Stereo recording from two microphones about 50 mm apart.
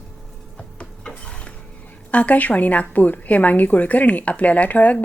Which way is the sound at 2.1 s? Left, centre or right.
Left.